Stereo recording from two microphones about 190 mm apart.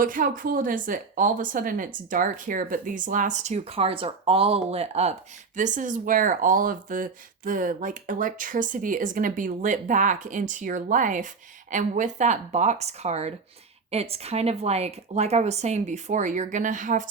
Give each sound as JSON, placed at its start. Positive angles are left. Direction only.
{"t": 0.0, "sound": "a woman's voice", "side_deg": -45}